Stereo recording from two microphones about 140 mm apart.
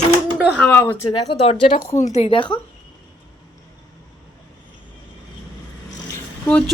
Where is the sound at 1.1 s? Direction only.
40° left (ahead or behind).